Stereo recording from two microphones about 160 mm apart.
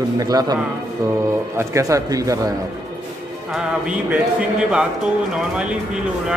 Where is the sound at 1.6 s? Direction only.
20° right (ahead or behind).